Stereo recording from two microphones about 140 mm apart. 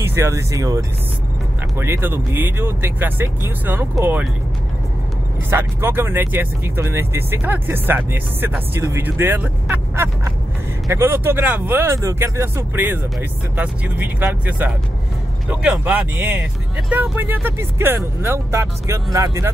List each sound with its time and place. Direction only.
0.0 s speech: 20° right (ahead or behind)
5.5 s speech: 20° right (ahead or behind)